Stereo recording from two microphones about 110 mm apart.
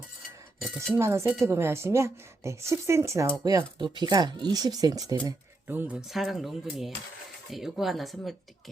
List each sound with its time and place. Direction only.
0.9 s speech: 25° right (ahead or behind)
3.4 s speech: 35° right (ahead or behind)
5.6 s speech: 15° right (ahead or behind)
6.1 s speech: centre (ahead or behind)